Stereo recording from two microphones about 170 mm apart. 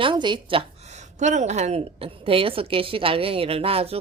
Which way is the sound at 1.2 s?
45° right (ahead or behind).